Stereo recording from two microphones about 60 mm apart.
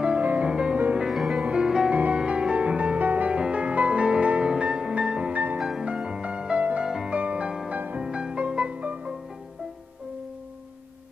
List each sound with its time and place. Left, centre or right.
0.0 s music: right
0.9 s music: centre
1.4 s music: centre
5.8 s music: centre
6.9 s music: centre
7.2 s music: right
7.7 s music: right
8.0 s music: centre